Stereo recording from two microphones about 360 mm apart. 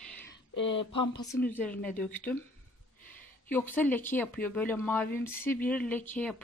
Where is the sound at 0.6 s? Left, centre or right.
Left.